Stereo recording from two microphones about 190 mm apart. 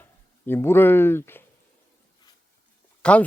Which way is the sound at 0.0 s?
10° left (ahead or behind).